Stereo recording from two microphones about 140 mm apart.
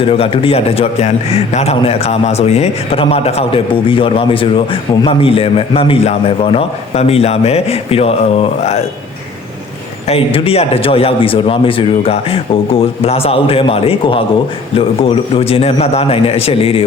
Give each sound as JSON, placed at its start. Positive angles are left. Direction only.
{"t": 0.0, "sound": "a man's voice", "side_deg": 40}
{"t": 10.1, "sound": "a man's voice", "side_deg": 45}